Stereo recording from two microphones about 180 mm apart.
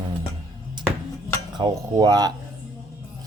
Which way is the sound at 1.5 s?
25° right (ahead or behind).